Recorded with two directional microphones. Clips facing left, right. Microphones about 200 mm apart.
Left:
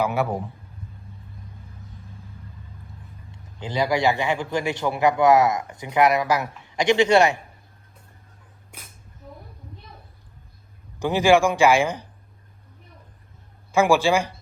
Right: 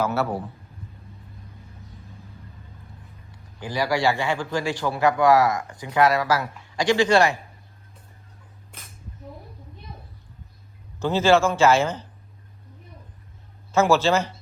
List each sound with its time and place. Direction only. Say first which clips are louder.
0.0 s speech: left 1 dB; 15° left (ahead or behind)
3.3 s a man's voice: left 2 dB; 20° left (ahead or behind)
11.0 s speech: left 1 dB; 15° left (ahead or behind)
13.7 s speech: left 1 dB; 15° left (ahead or behind)